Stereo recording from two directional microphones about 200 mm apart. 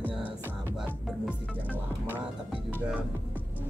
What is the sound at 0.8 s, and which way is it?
Music, 5° right (ahead or behind).